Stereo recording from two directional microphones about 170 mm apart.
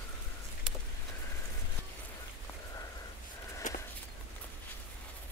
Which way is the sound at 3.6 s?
45° left (ahead or behind).